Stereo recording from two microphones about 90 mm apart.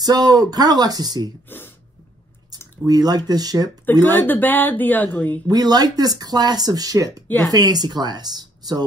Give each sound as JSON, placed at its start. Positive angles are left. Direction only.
{"t": 0.0, "sound": "speech", "side_deg": -45}
{"t": 2.9, "sound": "speech", "side_deg": -50}
{"t": 4.0, "sound": "speech", "side_deg": 20}
{"t": 5.5, "sound": "speech", "side_deg": -45}